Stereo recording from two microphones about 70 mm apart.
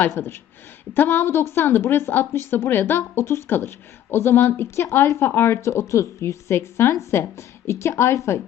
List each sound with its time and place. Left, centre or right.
0.1 s speech: left